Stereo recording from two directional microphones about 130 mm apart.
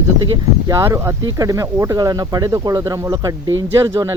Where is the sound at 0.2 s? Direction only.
30° right (ahead or behind).